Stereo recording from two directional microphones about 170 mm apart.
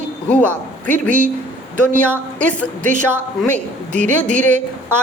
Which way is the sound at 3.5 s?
45° right (ahead or behind).